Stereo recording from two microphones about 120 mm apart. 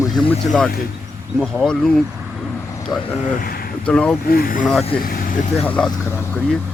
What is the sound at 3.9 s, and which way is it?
Speech, 10° left (ahead or behind).